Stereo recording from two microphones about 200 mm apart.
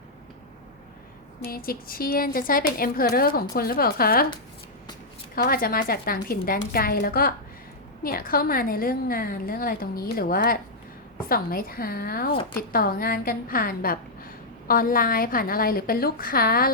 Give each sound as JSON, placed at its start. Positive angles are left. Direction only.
{"t": 1.5, "sound": "a woman's voice", "side_deg": 45}
{"t": 5.3, "sound": "a woman's voice", "side_deg": 45}